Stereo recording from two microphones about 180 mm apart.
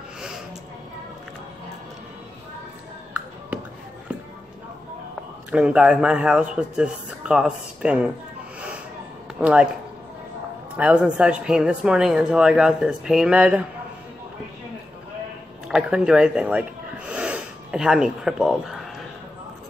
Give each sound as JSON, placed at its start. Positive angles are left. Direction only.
{"t": 5.5, "sound": "speech", "side_deg": -5}
{"t": 9.4, "sound": "speech", "side_deg": -5}
{"t": 10.8, "sound": "speech", "side_deg": -5}
{"t": 15.7, "sound": "speech", "side_deg": -5}